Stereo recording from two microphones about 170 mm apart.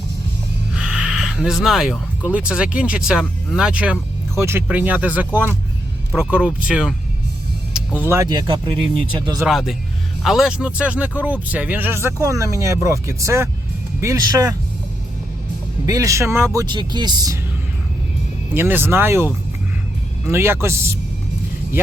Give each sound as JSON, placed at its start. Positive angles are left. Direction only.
{"t": 0.7, "sound": "speech", "side_deg": -5}
{"t": 8.0, "sound": "speech", "side_deg": -15}
{"t": 9.5, "sound": "speech", "side_deg": 0}
{"t": 15.9, "sound": "speech", "side_deg": -20}
{"t": 18.5, "sound": "speech", "side_deg": -15}